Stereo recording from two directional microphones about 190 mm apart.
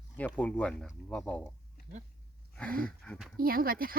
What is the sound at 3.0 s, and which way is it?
Speech, centre (ahead or behind).